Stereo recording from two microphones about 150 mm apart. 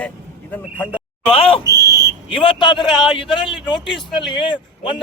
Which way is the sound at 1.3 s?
35° left (ahead or behind).